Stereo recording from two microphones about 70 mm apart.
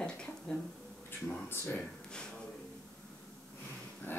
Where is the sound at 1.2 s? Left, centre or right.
Left.